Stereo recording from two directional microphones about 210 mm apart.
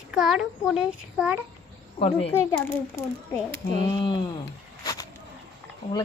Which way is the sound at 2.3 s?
15° left (ahead or behind).